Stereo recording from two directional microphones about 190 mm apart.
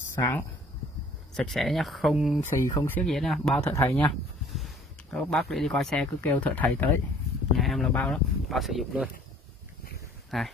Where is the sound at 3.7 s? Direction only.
15° left (ahead or behind).